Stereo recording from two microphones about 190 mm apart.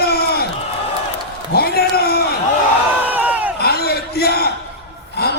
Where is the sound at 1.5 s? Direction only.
55° left (ahead or behind).